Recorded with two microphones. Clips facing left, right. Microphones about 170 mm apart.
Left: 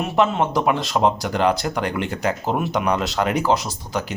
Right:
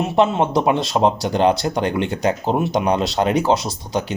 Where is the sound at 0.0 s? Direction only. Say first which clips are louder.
Right 2 dB; 25° right (ahead or behind).